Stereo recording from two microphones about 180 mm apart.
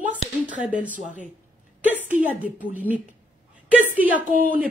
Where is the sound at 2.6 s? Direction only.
10° right (ahead or behind).